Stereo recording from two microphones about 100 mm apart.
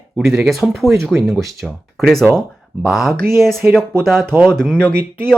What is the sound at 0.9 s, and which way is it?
Speech, 30° right (ahead or behind).